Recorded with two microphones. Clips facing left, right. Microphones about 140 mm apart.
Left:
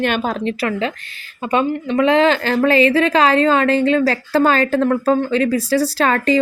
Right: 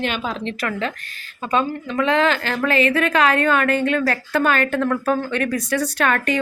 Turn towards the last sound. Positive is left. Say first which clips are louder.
# left 4 dB
turn(degrees=30)  # may be behind; listen again after turning